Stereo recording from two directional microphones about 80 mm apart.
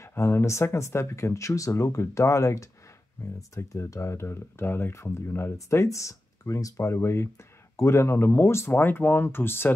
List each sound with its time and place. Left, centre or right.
0.0 s speech: left